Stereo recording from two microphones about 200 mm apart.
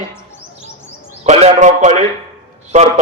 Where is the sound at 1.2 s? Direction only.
35° right (ahead or behind).